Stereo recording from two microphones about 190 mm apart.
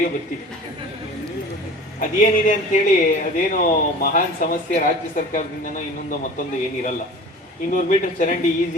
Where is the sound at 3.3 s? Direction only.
45° left (ahead or behind).